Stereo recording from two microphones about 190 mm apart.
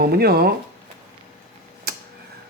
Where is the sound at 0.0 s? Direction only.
55° right (ahead or behind).